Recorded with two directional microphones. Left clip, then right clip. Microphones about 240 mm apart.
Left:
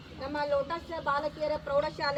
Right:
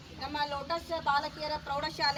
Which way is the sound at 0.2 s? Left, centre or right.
Centre.